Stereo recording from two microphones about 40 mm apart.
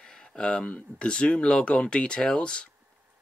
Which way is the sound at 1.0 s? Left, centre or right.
Left.